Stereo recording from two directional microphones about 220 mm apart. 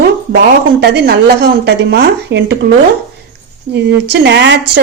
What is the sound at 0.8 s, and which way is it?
A woman's voice, 50° right (ahead or behind).